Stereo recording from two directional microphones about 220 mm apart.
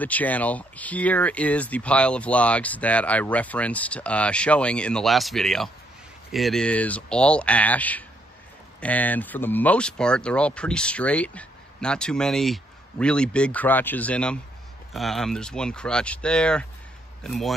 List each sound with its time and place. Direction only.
0.0 s a man's voice: 5° left (ahead or behind)